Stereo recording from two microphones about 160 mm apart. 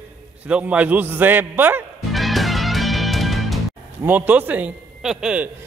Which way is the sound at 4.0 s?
10° right (ahead or behind).